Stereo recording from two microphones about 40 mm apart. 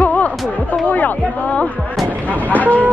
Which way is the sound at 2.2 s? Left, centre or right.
Left.